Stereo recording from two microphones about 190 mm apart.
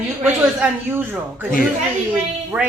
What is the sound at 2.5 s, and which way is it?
Speech, 5° right (ahead or behind).